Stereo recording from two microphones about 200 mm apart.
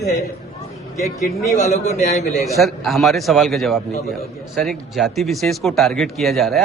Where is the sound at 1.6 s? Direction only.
35° left (ahead or behind).